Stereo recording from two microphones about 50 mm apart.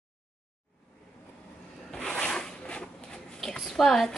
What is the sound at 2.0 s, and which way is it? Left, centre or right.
Zipper, centre.